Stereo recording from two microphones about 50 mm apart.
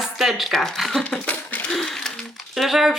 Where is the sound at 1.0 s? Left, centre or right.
Left.